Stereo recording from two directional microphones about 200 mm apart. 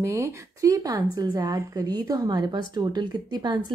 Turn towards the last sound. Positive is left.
turn(degrees=-20)  # may be behind; listen again after turning